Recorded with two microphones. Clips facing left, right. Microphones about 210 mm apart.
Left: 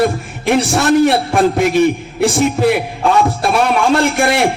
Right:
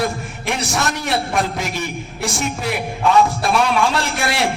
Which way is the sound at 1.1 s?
60° left (ahead or behind).